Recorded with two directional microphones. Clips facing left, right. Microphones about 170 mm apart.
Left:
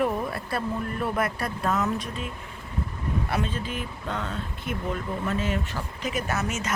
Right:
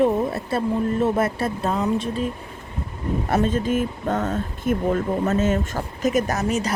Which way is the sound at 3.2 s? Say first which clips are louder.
Right 12 dB; 45° right (ahead or behind).